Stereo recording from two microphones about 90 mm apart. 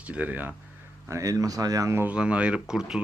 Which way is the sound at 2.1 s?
10° right (ahead or behind).